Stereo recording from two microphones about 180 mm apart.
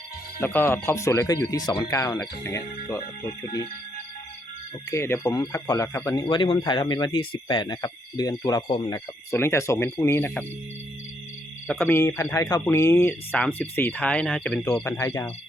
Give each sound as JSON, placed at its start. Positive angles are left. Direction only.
{"t": 0.3, "sound": "speech", "side_deg": 10}
{"t": 4.9, "sound": "speech", "side_deg": 15}
{"t": 9.3, "sound": "speech", "side_deg": 15}
{"t": 11.7, "sound": "speech", "side_deg": 0}
{"t": 11.9, "sound": "speech", "side_deg": 15}